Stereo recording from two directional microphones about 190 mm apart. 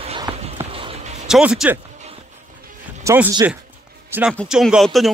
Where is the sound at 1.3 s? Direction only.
5° right (ahead or behind).